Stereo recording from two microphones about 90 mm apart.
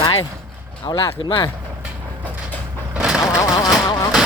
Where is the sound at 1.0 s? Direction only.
85° left.